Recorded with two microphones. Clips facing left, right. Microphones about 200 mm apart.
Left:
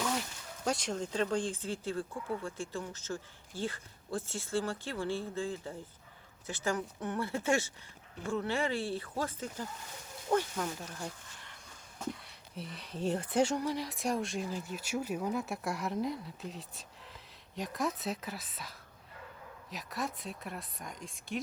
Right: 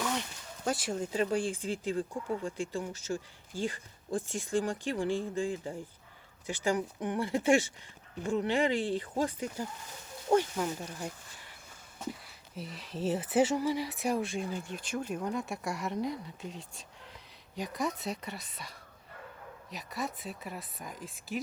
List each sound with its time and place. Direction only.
0.0 s speech: centre (ahead or behind)
12.5 s speech: centre (ahead or behind)